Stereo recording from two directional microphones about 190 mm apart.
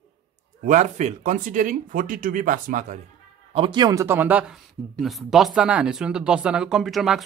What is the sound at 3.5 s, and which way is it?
Speech, 25° right (ahead or behind).